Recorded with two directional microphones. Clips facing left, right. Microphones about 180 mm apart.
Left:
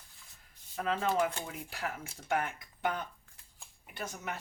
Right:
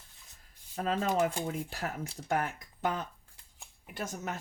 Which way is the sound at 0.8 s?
35° right (ahead or behind).